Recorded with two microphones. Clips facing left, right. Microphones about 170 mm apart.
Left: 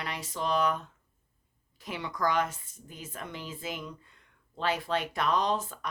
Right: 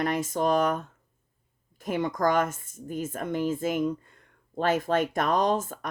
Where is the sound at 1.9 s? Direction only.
45° right (ahead or behind).